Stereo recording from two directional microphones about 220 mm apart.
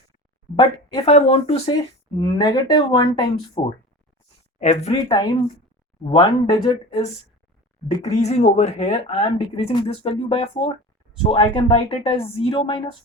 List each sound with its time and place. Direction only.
0.6 s speech: 25° left (ahead or behind)
4.6 s speech: 30° left (ahead or behind)
8.1 s speech: 30° left (ahead or behind)